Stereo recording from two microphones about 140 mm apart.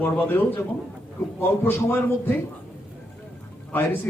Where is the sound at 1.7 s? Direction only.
15° left (ahead or behind).